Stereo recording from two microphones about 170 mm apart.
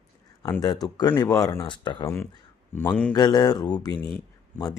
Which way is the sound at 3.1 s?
20° left (ahead or behind).